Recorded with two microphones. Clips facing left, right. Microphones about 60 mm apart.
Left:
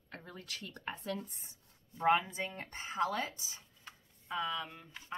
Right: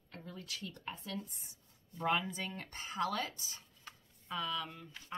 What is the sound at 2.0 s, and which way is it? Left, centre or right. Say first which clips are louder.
A woman's voice: left 5 dB; left.